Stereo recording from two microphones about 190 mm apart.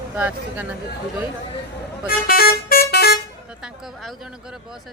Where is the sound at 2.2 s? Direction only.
50° left (ahead or behind).